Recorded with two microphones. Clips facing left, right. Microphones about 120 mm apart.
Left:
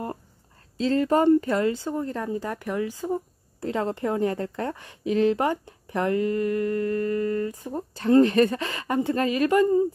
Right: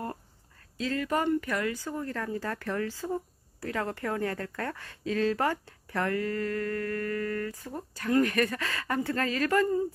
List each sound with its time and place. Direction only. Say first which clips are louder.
0.7 s a woman's voice: left 8 dB; 30° left (ahead or behind)